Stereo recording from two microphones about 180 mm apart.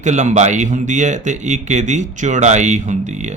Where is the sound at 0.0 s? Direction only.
40° right (ahead or behind).